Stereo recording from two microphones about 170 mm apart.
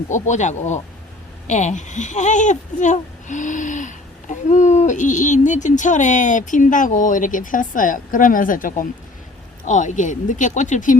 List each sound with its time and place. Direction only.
0.1 s speech: 45° left (ahead or behind)